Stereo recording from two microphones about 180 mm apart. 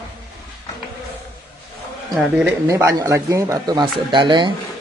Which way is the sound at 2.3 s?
10° right (ahead or behind).